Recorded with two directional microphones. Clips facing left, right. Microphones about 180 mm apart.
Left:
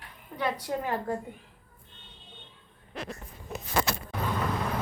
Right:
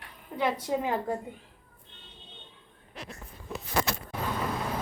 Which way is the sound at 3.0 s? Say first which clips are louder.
Left 5 dB; 55° left (ahead or behind).